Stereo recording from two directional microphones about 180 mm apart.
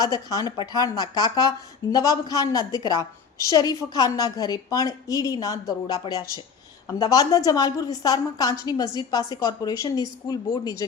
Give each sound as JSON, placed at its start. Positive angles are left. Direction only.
{"t": 0.0, "sound": "speech", "side_deg": 20}